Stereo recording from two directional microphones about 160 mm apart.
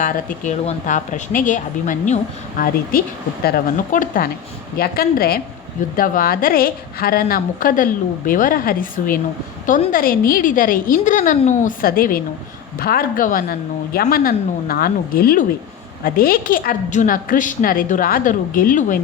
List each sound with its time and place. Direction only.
0.0 s speech: 45° left (ahead or behind)
2.9 s a woman's voice: 65° left (ahead or behind)
4.8 s a woman's voice: 70° left (ahead or behind)